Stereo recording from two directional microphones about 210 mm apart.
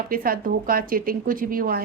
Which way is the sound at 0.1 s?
45° right (ahead or behind).